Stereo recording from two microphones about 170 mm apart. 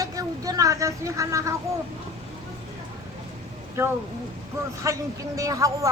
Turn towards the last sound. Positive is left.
turn(degrees=-20)  # may be behind; listen again after turning